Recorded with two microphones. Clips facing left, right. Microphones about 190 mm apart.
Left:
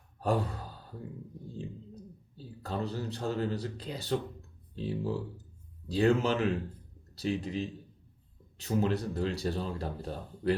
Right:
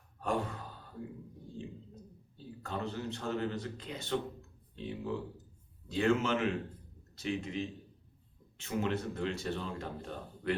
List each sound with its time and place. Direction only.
0.2 s speech: 35° left (ahead or behind)
2.6 s speech: 35° left (ahead or behind)